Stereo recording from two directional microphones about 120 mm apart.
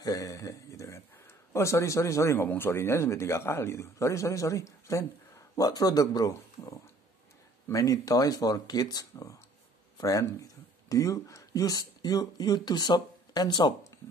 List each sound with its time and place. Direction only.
0.0 s speech: 30° left (ahead or behind)